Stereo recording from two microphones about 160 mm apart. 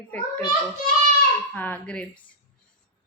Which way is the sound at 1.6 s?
10° left (ahead or behind).